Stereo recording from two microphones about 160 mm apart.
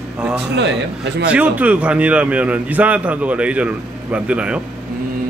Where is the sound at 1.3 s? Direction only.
10° right (ahead or behind).